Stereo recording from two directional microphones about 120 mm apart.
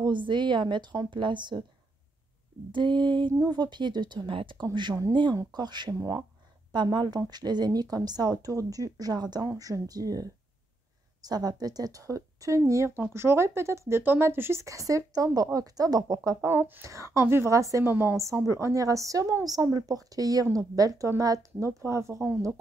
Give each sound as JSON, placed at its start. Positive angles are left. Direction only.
{"t": 0.0, "sound": "a woman's voice", "side_deg": -40}
{"t": 2.7, "sound": "a woman's voice", "side_deg": -40}
{"t": 16.4, "sound": "a woman's voice", "side_deg": -15}